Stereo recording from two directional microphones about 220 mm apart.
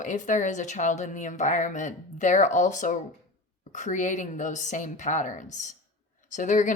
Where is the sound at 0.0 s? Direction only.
35° left (ahead or behind).